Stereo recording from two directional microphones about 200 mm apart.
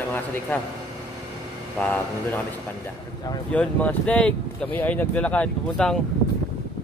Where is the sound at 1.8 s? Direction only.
10° left (ahead or behind).